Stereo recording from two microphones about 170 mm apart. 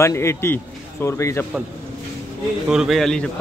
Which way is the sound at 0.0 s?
15° left (ahead or behind).